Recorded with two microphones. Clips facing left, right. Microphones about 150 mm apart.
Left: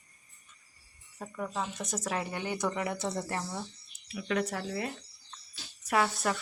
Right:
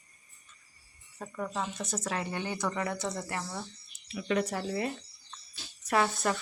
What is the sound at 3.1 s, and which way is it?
Speech, 30° left (ahead or behind).